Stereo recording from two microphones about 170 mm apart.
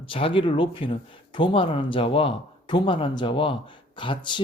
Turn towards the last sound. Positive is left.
turn(degrees=30)  # may be behind; listen again after turning